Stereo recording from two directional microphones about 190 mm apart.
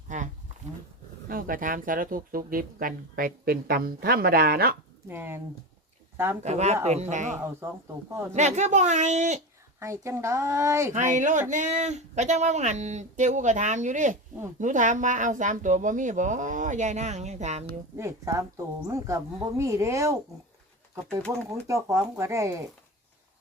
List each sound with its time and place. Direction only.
1.3 s speech: 50° right (ahead or behind)
5.0 s speech: 10° right (ahead or behind)
6.4 s speech: 35° right (ahead or behind)
9.8 s speech: 15° right (ahead or behind)
10.9 s speech: 40° right (ahead or behind)
17.9 s speech: 15° right (ahead or behind)
21.7 s speech: 15° right (ahead or behind)